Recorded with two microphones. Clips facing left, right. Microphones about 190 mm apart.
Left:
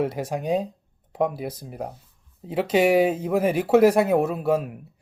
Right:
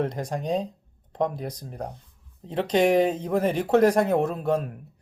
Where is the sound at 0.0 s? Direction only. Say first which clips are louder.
Left 2 dB; 5° left (ahead or behind).